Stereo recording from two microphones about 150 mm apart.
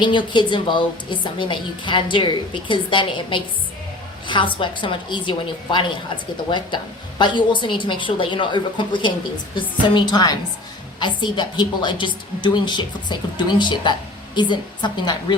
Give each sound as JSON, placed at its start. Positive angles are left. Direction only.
{"t": 0.0, "sound": "a woman's voice", "side_deg": 30}
{"t": 7.2, "sound": "a woman's voice", "side_deg": 30}